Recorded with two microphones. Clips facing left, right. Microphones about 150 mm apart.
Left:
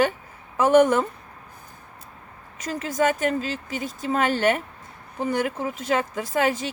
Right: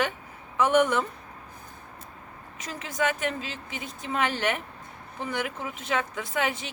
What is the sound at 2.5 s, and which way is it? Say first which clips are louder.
Speech: left 7 dB; 40° left (ahead or behind).